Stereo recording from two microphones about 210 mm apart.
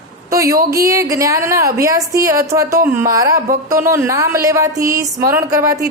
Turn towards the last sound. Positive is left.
turn(degrees=-15)  # may be behind; listen again after turning